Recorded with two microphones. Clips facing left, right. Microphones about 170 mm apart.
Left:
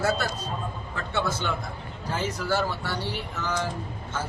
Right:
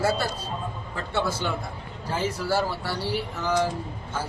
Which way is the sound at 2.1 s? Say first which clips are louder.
Right 1 dB; 10° right (ahead or behind).